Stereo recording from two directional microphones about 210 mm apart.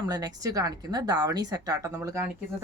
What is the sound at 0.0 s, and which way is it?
A woman's voice, 15° right (ahead or behind).